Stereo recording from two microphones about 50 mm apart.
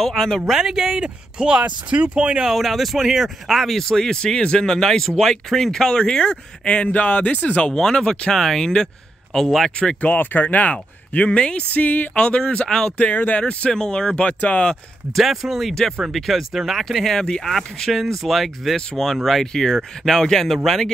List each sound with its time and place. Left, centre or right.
0.0 s speech: centre
0.6 s speech: centre
2.5 s speech: centre; by 7.7 s left
7.7 s speech: centre
9.8 s speech: left
10.1 s speech: left
11.8 s speech: left
12.1 s speech: left
12.9 s speech: left
15.1 s speech: centre
17.2 s speech: centre
17.5 s speech: centre